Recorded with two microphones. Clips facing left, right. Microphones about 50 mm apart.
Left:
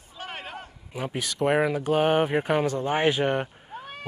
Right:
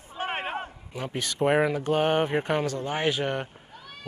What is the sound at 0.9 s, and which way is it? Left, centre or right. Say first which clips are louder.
Speech: left 2 dB; centre.